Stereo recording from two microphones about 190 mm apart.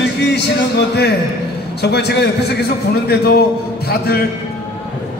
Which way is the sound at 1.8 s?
60° left (ahead or behind).